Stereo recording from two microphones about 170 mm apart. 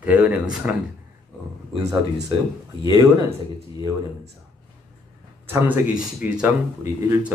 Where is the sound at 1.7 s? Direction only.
20° right (ahead or behind).